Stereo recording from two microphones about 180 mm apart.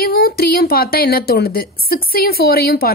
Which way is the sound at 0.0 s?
60° left (ahead or behind).